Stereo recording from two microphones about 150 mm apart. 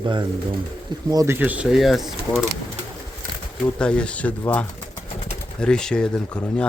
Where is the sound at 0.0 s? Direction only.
30° right (ahead or behind); by 2.4 s centre (ahead or behind).